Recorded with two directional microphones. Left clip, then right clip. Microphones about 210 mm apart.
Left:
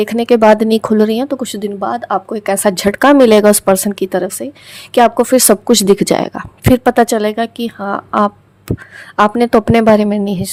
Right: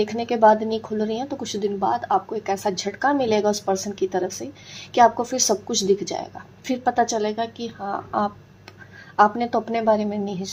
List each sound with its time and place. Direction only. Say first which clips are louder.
0.0 s speech: left 8 dB; 50° left (ahead or behind)